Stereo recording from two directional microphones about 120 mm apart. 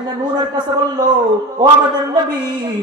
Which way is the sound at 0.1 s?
35° right (ahead or behind).